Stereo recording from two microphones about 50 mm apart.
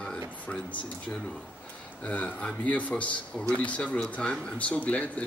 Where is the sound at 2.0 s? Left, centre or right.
Left.